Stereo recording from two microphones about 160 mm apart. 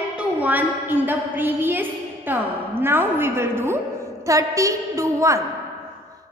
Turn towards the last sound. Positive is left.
turn(degrees=-20)  # may be behind; listen again after turning